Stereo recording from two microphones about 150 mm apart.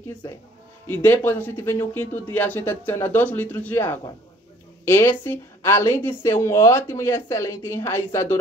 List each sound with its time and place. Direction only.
0.8 s speech: 15° left (ahead or behind)